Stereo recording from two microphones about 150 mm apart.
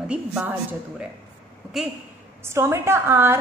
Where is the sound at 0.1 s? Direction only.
5° right (ahead or behind).